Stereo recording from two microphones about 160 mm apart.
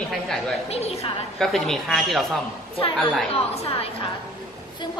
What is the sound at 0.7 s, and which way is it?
Speech, 40° left (ahead or behind).